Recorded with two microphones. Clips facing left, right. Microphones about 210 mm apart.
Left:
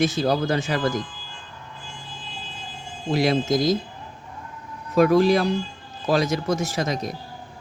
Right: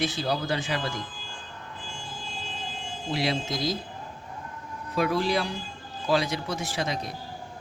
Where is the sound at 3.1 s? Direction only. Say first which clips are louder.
Left 8 dB; 45° left (ahead or behind).